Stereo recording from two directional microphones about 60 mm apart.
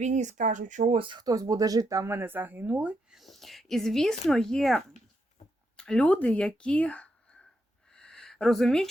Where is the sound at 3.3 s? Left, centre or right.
Centre.